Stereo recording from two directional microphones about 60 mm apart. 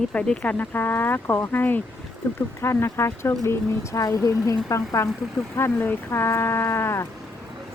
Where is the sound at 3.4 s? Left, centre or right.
Left.